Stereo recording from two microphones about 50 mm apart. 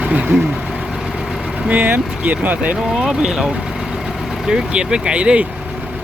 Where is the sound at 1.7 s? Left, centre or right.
Right.